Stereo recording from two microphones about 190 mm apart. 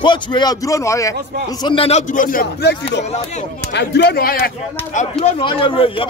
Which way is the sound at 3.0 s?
35° left (ahead or behind).